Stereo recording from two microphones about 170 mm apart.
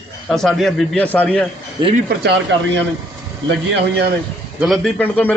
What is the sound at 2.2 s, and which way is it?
Speech, 90° right.